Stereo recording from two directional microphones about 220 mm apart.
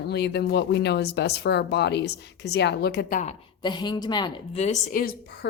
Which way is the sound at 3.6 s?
20° left (ahead or behind).